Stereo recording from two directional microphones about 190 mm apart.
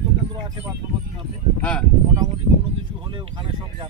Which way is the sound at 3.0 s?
25° right (ahead or behind).